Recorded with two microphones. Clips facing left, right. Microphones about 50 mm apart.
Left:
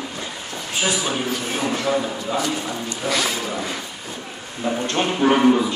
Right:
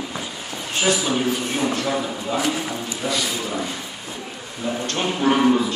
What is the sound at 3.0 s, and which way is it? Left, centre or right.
Speech, centre.